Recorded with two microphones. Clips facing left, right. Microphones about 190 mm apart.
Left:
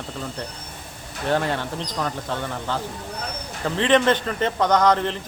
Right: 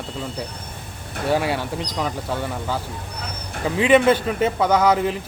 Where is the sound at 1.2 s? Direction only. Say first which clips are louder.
Right 2 dB; 10° right (ahead or behind).